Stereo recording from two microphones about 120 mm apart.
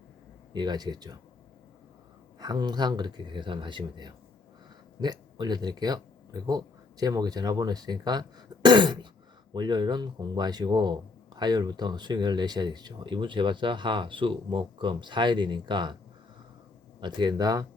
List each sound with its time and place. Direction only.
0.5 s a man's voice: 35° right (ahead or behind)
2.4 s a man's voice: 35° right (ahead or behind)
17.0 s a man's voice: 40° right (ahead or behind)